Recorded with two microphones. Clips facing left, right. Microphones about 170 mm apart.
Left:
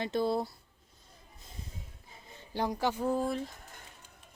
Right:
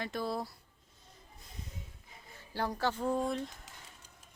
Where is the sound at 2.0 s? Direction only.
20° left (ahead or behind); by 3.5 s centre (ahead or behind).